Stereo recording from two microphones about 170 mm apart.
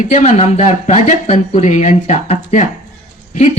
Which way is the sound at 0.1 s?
45° left (ahead or behind).